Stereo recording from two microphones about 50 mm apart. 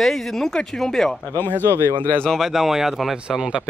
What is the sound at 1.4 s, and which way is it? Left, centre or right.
Speech, left.